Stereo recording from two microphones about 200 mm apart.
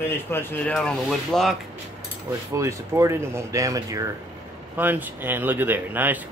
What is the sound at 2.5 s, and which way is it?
Speech, 15° right (ahead or behind).